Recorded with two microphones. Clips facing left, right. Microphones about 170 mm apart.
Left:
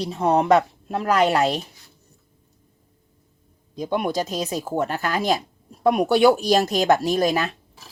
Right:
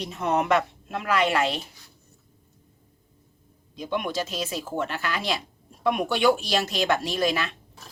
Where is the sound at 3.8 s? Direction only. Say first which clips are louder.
Left 5 dB; 40° left (ahead or behind).